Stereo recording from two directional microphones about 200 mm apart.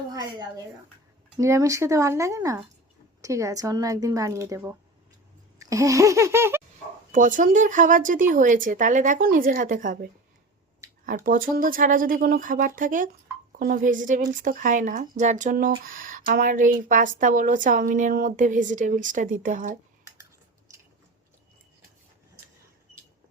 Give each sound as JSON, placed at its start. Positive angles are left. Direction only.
{"t": 0.1, "sound": "speech", "side_deg": -20}
{"t": 7.1, "sound": "a woman's voice", "side_deg": -40}